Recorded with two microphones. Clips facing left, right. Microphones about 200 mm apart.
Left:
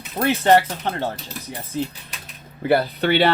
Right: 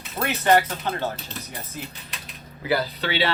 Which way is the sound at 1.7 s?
25° left (ahead or behind).